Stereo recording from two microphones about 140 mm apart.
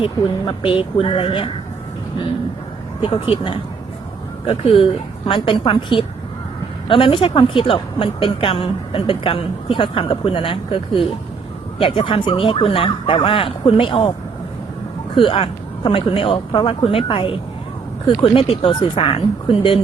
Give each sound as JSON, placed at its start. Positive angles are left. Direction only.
{"t": 0.0, "sound": "a woman's voice", "side_deg": 40}
{"t": 3.0, "sound": "a woman's voice", "side_deg": 40}
{"t": 15.1, "sound": "a woman's voice", "side_deg": 40}